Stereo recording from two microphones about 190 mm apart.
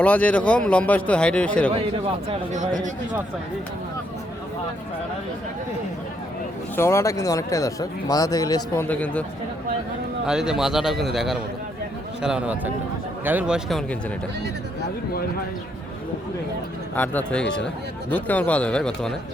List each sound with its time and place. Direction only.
0.0 s speech: 5° left (ahead or behind)
6.7 s speech: 15° left (ahead or behind)
10.2 s speech: 5° right (ahead or behind)
16.9 s speech: 10° left (ahead or behind)